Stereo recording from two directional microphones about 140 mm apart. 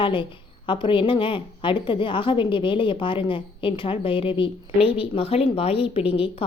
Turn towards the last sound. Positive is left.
turn(degrees=40)  # may be behind; listen again after turning